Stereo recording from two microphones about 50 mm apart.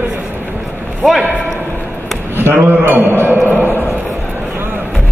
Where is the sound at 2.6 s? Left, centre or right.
Right.